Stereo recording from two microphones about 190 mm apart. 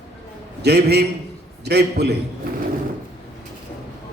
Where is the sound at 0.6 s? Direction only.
60° right (ahead or behind).